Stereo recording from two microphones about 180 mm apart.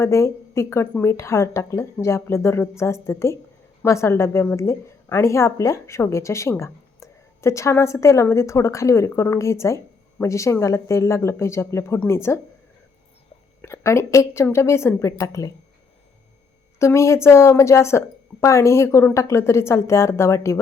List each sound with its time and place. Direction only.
0.0 s a woman's voice: 15° left (ahead or behind)
13.6 s a woman's voice: 15° left (ahead or behind)
16.7 s a woman's voice: 15° left (ahead or behind)